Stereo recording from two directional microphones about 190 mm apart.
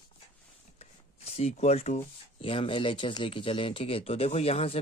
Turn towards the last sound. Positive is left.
turn(degrees=30)  # may be behind; listen again after turning